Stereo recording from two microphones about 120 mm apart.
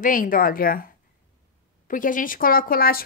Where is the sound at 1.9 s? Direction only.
90° left.